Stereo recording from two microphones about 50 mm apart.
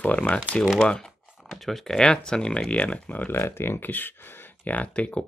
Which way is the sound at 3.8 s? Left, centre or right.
Left.